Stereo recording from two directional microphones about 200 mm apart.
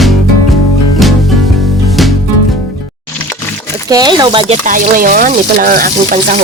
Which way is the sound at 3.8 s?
20° right (ahead or behind).